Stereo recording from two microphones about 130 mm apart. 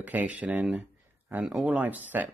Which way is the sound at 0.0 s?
10° right (ahead or behind).